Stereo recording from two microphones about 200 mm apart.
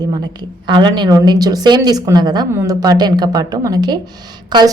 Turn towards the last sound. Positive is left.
turn(degrees=-20)  # may be behind; listen again after turning